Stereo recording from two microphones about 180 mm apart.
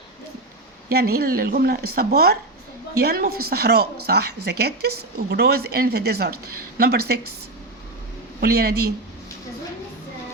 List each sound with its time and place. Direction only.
0.9 s a woman's voice: 60° right (ahead or behind)
8.4 s a woman's voice: 60° right (ahead or behind)